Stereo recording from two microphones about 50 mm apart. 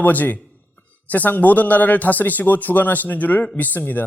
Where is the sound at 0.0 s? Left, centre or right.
Left.